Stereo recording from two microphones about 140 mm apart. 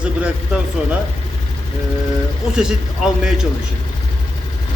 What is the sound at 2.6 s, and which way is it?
Speech, 5° right (ahead or behind).